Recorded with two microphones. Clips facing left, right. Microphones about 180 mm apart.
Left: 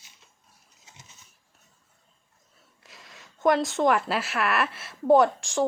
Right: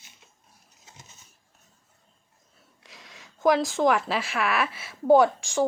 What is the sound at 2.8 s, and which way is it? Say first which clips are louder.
Speech: right 1 dB; centre (ahead or behind).